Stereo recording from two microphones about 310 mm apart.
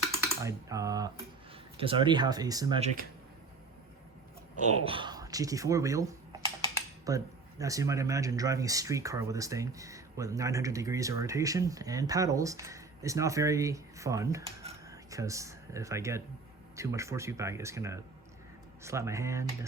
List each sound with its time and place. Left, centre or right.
0.1 s speech: centre
4.5 s speech: centre
6.7 s typing: centre
7.6 s speech: centre